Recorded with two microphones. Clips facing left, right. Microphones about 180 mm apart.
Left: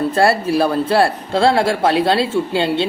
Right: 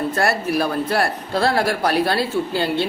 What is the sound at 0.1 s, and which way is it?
Speech, 30° left (ahead or behind).